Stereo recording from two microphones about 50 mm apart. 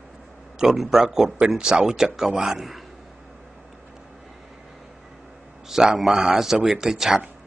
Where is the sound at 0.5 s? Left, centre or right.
Centre.